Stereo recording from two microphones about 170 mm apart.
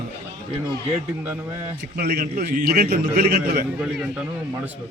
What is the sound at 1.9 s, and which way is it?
A man's voice, 65° right (ahead or behind).